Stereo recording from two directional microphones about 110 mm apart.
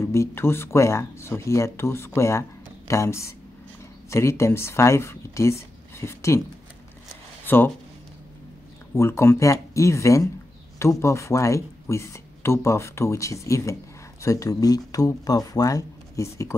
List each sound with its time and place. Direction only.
0.0 s speech: 25° left (ahead or behind)
7.4 s speech: 20° left (ahead or behind)
8.9 s speech: 25° left (ahead or behind)